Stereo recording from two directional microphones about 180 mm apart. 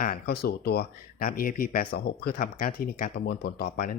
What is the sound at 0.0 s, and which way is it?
Speech, 55° left (ahead or behind).